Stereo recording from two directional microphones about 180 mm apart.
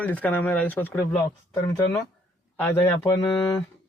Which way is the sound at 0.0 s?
10° left (ahead or behind).